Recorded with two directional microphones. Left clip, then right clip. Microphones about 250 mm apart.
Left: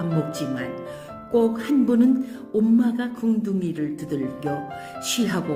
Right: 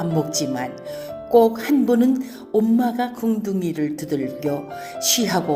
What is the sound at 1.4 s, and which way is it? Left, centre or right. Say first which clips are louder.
Speech: right 4 dB; centre.